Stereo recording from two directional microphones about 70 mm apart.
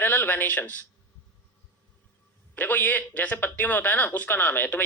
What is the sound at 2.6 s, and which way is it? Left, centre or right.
A man's voice, left.